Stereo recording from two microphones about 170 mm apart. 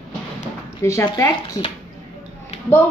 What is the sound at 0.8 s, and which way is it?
Speech, 15° left (ahead or behind).